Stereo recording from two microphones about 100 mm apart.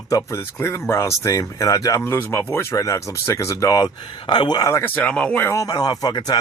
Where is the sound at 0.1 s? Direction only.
30° left (ahead or behind).